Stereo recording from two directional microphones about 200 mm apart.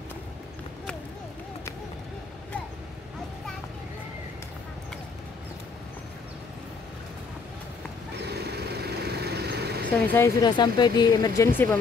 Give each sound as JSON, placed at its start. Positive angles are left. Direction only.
{"t": 8.3, "sound": "vehicle", "side_deg": -55}
{"t": 10.0, "sound": "speech", "side_deg": 15}